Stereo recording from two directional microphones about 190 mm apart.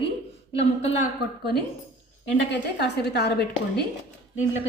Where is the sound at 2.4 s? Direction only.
65° left (ahead or behind).